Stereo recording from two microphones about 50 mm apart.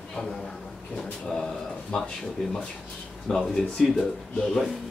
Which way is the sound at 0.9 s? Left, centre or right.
Centre.